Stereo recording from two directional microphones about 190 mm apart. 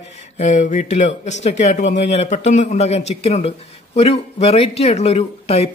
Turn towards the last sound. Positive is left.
turn(degrees=35)  # may be behind; listen again after turning